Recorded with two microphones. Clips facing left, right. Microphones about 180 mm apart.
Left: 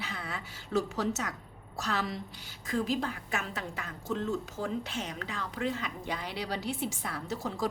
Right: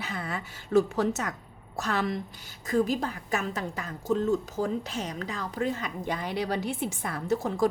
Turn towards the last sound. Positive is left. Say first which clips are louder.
# right 7 dB
turn(degrees=-50)  # may be behind; listen again after turning